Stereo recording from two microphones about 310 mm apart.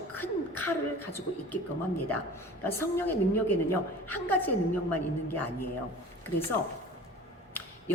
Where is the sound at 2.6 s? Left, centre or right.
Centre.